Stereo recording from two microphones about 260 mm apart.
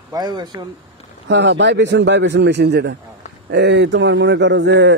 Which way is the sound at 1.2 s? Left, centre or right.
Right.